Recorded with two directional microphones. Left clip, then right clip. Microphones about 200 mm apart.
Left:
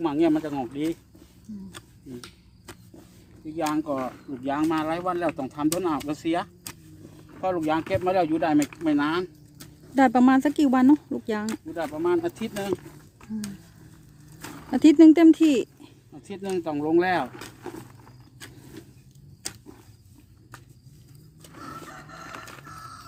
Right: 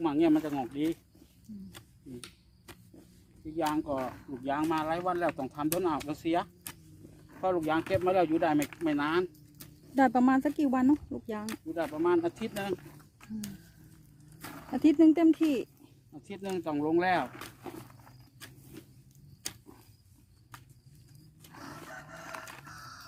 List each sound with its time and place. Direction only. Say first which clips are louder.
0.0 s speech: left 4 dB; 5° left (ahead or behind)
2.7 s a sound: left 7 dB; centre (ahead or behind)
3.7 s speech: left 6 dB; 10° left (ahead or behind)
8.8 s a sound: left 5 dB; centre (ahead or behind)
10.0 s speech: left 6 dB; 10° left (ahead or behind)
11.4 s speech: left 4 dB; 5° right (ahead or behind)
14.7 s speech: left 8 dB; 20° left (ahead or behind)
16.1 s speech: left 7 dB; 5° left (ahead or behind)
18.3 s vehicle: left 6 dB; 15° right (ahead or behind)
19.4 s a sound: left 4 dB; 5° right (ahead or behind)
21.8 s crowing: left 4 dB; 20° right (ahead or behind)
22.7 s music: left 6 dB; 20° right (ahead or behind)